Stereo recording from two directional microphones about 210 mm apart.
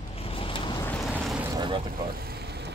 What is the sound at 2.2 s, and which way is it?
Boat, 50° right (ahead or behind).